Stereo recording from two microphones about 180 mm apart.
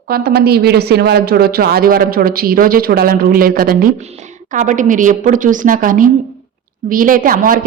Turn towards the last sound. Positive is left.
turn(degrees=-50)  # may be behind; listen again after turning